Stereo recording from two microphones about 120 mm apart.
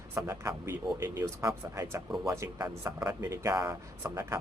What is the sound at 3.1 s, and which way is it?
A man's voice, 25° right (ahead or behind).